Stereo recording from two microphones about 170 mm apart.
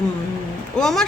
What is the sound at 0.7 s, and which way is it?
Speech, 5° left (ahead or behind).